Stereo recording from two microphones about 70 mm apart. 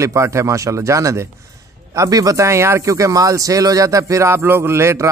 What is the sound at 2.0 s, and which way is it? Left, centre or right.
Speech, right.